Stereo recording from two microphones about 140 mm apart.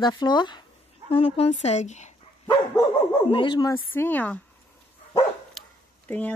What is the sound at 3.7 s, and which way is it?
Speech, 15° left (ahead or behind).